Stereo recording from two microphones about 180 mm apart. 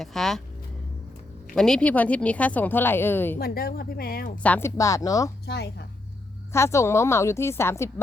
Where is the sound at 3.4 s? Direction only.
55° left (ahead or behind).